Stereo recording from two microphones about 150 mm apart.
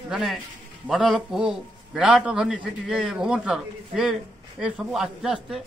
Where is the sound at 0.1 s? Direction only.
5° right (ahead or behind).